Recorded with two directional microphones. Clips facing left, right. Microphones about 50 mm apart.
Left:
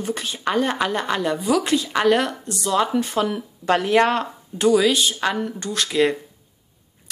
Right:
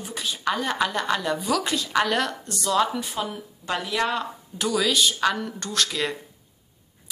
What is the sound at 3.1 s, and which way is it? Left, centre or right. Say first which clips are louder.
Speech: left 8 dB; left.